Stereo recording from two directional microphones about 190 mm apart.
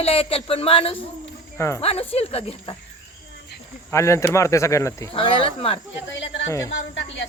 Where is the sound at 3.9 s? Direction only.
15° left (ahead or behind).